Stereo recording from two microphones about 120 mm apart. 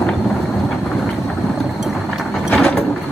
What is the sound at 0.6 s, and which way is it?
Vehicle, 5° left (ahead or behind).